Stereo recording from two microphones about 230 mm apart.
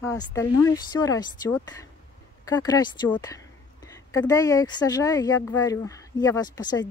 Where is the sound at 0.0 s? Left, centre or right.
Centre.